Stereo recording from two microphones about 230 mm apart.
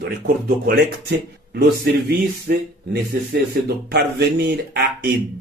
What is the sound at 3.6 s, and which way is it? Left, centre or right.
Speech, right.